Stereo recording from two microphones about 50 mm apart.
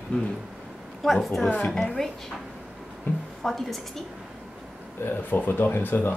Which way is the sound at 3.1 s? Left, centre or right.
Left.